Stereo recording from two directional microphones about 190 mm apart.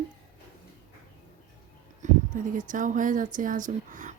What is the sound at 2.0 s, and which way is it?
A woman's voice, 40° right (ahead or behind).